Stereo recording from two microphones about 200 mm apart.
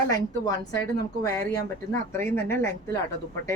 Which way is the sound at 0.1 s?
20° left (ahead or behind).